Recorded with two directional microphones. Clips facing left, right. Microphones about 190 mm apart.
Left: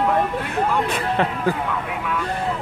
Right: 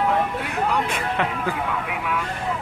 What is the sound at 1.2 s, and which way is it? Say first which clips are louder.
Speech: left 3 dB; 35° left (ahead or behind).